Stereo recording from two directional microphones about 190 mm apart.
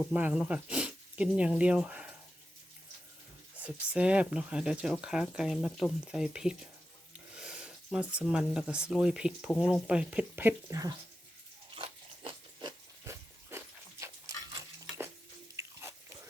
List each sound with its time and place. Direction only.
0.1 s speech: 10° right (ahead or behind)
3.6 s speech: 5° right (ahead or behind)
11.8 s a sound: 25° right (ahead or behind)